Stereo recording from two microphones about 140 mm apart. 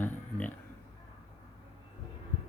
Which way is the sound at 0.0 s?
10° left (ahead or behind).